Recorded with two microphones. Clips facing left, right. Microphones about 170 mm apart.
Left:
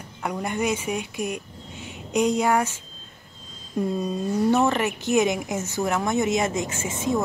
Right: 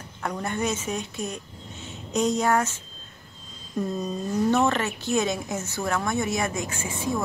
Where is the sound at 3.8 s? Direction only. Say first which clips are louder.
Left 3 dB; 10° left (ahead or behind).